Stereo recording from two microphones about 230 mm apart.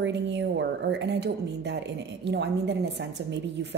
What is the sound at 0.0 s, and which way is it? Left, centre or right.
Speech, right.